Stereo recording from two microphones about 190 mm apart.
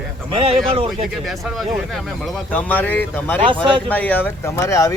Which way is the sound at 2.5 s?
10° left (ahead or behind).